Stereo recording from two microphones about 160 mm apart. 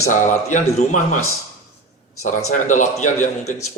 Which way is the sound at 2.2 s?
50° left (ahead or behind).